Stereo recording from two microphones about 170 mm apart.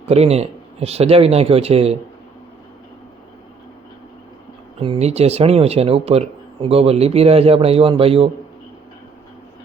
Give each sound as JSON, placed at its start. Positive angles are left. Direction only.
{"t": 0.1, "sound": "speech", "side_deg": -35}
{"t": 4.8, "sound": "speech", "side_deg": -35}